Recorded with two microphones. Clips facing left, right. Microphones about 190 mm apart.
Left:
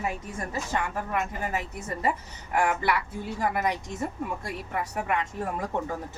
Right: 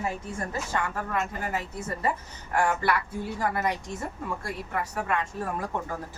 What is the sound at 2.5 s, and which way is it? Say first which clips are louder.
Speech: even; 20° left (ahead or behind).